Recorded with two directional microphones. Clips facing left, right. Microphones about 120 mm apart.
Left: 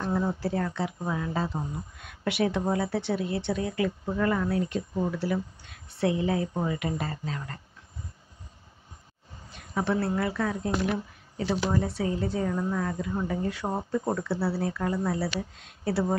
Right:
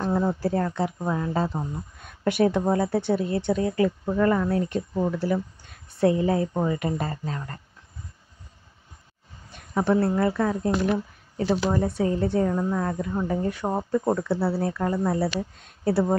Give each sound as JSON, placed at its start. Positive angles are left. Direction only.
{"t": 0.0, "sound": "a woman's voice", "side_deg": -40}
{"t": 9.5, "sound": "speech", "side_deg": -45}
{"t": 13.7, "sound": "speech", "side_deg": -60}
{"t": 14.1, "sound": "speech", "side_deg": -45}